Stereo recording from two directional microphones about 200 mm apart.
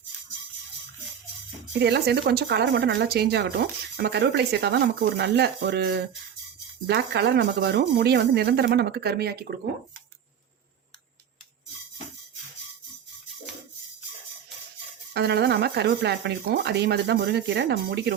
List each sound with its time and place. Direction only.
1.8 s speech: 55° right (ahead or behind)
15.1 s speech: 55° right (ahead or behind)